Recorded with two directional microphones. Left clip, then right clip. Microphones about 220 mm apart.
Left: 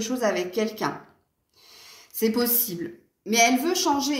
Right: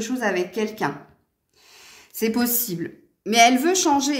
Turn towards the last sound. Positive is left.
turn(degrees=-50)  # may be behind; listen again after turning